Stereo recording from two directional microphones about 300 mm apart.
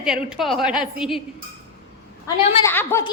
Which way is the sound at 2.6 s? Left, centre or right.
Centre.